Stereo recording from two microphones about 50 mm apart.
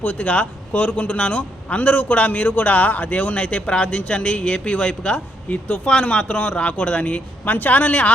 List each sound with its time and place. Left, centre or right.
0.0 s a man's voice: left
5.5 s speech: left
5.8 s a man's voice: centre